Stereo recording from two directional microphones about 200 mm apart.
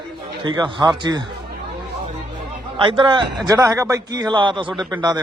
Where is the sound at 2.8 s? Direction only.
25° right (ahead or behind).